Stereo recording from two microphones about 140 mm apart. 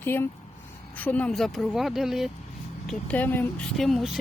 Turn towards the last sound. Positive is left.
turn(degrees=0)  # may be behind; listen again after turning